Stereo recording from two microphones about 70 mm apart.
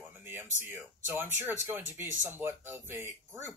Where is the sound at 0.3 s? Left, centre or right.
Right.